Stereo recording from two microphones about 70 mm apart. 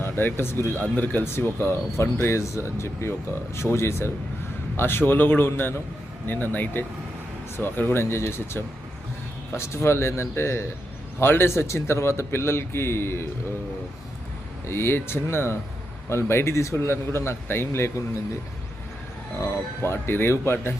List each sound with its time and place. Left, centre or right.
0.0 s speech: left
14.7 s speech: left
19.4 s speech: left